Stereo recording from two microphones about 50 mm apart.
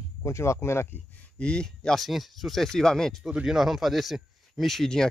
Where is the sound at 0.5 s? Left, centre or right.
Left.